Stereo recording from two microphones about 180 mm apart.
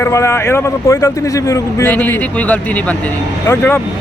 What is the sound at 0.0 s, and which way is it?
Speech, 15° left (ahead or behind).